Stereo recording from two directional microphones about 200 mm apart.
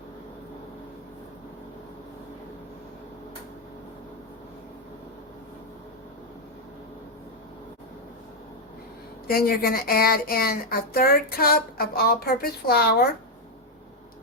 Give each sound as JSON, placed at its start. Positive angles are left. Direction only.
{"t": 9.2, "sound": "speech", "side_deg": 50}